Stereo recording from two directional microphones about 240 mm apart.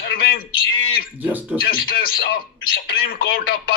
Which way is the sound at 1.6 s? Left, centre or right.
Left.